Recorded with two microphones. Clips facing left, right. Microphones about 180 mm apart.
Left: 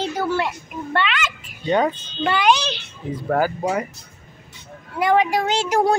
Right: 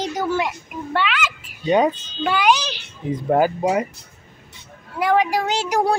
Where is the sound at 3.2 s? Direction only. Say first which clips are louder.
Right 3 dB; 20° right (ahead or behind).